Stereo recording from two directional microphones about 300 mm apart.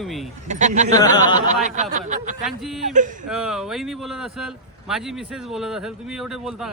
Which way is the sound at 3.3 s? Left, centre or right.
Centre.